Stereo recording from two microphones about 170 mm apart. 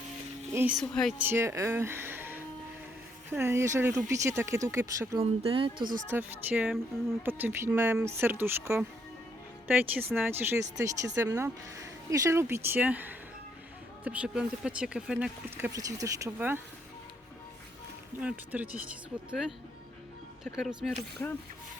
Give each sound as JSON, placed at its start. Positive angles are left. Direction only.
{"t": 0.8, "sound": "speech", "side_deg": 5}
{"t": 1.2, "sound": "speech", "side_deg": -15}
{"t": 5.2, "sound": "speech", "side_deg": -35}
{"t": 5.8, "sound": "speech", "side_deg": -55}
{"t": 6.1, "sound": "speech", "side_deg": -10}
{"t": 15.7, "sound": "speech", "side_deg": -20}
{"t": 18.2, "sound": "speech", "side_deg": -10}